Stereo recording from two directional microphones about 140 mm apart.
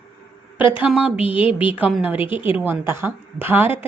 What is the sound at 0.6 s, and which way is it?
Speech, 10° right (ahead or behind).